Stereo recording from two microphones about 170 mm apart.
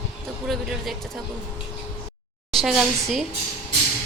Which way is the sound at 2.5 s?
Centre (ahead or behind).